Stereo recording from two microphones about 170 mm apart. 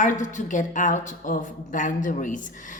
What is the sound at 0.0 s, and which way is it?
A woman's voice, 50° left (ahead or behind).